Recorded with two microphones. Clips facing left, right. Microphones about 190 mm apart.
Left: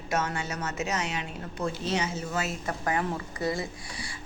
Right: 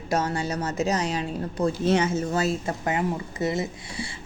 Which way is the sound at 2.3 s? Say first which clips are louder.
Right 6 dB; 35° right (ahead or behind).